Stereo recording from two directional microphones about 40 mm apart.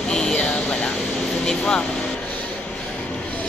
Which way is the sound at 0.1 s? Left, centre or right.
Centre.